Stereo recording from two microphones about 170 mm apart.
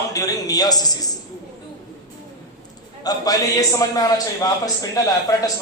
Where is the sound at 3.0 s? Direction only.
20° left (ahead or behind).